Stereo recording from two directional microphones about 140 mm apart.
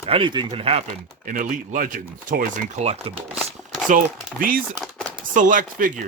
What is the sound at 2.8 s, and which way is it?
Speech, 50° right (ahead or behind).